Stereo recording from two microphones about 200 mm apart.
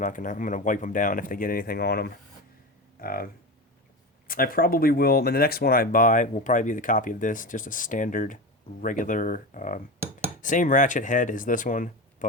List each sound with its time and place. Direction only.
0.0 s speech: 40° left (ahead or behind)
4.3 s speech: 45° left (ahead or behind)